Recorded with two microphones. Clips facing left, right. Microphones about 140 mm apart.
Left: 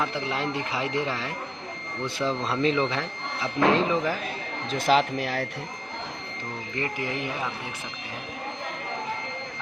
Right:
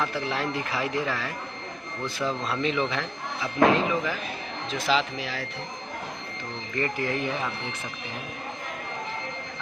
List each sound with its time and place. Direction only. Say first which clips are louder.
0.0 s speech: even; 20° left (ahead or behind)
4.7 s speech: left 4 dB; 45° left (ahead or behind)
6.7 s speech: right 3 dB; 15° left (ahead or behind)